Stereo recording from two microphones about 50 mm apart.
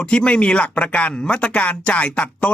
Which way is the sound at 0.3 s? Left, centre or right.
Left.